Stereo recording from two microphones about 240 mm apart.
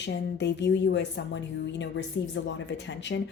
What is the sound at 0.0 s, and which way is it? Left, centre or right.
Speech, left.